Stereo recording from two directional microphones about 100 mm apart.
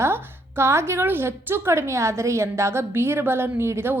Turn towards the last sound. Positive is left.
turn(degrees=-25)  # may be behind; listen again after turning